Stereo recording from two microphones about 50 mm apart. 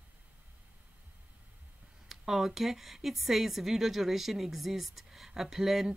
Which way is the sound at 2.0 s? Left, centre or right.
Centre.